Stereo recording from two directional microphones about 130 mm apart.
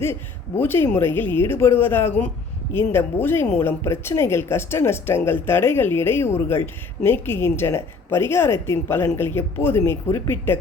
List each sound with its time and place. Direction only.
0.6 s speech: 15° left (ahead or behind)